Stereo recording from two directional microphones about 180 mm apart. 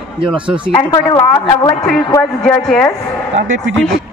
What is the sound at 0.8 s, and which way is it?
Speech, 20° left (ahead or behind).